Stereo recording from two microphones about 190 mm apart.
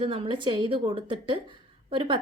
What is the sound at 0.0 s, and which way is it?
A woman's voice, 25° right (ahead or behind).